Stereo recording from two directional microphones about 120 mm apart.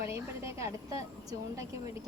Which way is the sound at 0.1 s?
25° right (ahead or behind).